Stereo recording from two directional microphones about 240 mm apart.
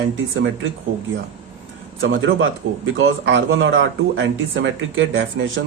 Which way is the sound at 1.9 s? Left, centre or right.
Right.